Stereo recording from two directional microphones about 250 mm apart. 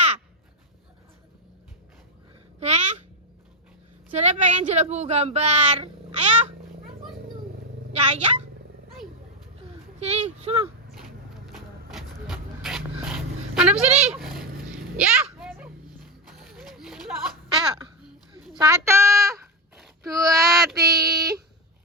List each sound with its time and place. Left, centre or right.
2.6 s babbling: right
4.1 s speech: right
7.9 s speech: right
10.0 s a sound: right
11.9 s dog: centre
13.8 s speech: right
14.1 s a sound: centre
17.5 s a sound: centre
20.1 s female singing: centre